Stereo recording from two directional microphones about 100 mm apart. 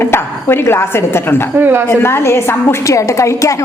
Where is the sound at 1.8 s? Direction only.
25° left (ahead or behind).